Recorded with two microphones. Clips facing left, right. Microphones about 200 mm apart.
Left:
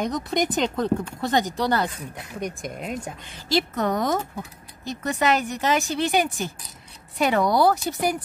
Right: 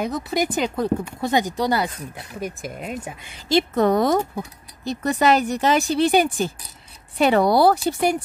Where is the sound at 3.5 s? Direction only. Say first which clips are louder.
Right 5 dB; 25° right (ahead or behind).